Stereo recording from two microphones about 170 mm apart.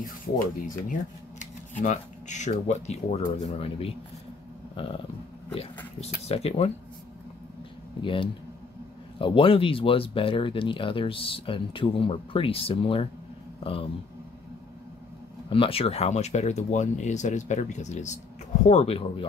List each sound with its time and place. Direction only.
0.0 s speech: 55° left (ahead or behind); by 3.9 s 35° left (ahead or behind)
5.9 s speech: 40° left (ahead or behind)
8.0 s speech: 30° left (ahead or behind)
15.5 s speech: 35° left (ahead or behind)